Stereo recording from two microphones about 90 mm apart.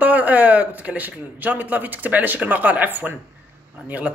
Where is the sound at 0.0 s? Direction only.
20° right (ahead or behind).